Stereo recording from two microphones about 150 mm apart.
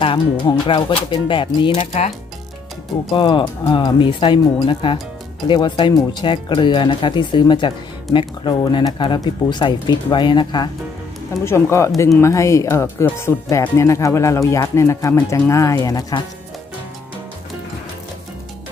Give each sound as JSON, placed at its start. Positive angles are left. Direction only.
{"t": 0.0, "sound": "speech", "side_deg": 35}
{"t": 3.1, "sound": "speech", "side_deg": 30}
{"t": 11.4, "sound": "speech", "side_deg": 20}